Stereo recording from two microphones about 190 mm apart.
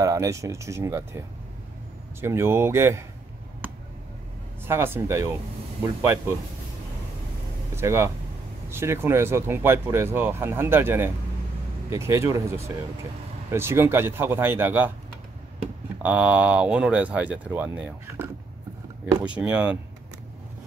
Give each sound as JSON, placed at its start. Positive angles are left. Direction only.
{"t": 0.0, "sound": "speech", "side_deg": -15}
{"t": 2.2, "sound": "speech", "side_deg": -15}
{"t": 4.6, "sound": "speech", "side_deg": -10}
{"t": 7.7, "sound": "speech", "side_deg": -15}
{"t": 16.0, "sound": "speech", "side_deg": -10}